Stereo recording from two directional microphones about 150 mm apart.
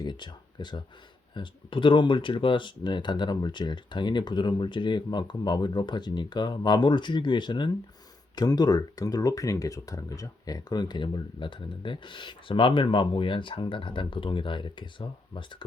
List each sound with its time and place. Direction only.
0.0 s speech: 30° left (ahead or behind)